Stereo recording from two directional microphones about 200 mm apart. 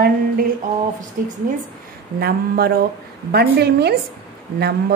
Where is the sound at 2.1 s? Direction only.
50° right (ahead or behind).